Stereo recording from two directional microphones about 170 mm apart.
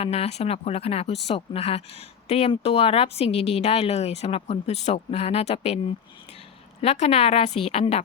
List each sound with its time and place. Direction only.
0.0 s speech: 35° left (ahead or behind)
6.8 s speech: 40° left (ahead or behind)